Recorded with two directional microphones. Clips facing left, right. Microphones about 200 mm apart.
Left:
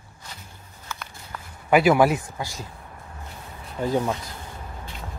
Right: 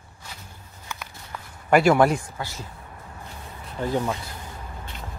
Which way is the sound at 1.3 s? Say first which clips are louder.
Even; 5° left (ahead or behind).